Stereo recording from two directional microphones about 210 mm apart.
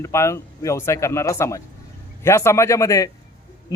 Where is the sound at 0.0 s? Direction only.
15° left (ahead or behind).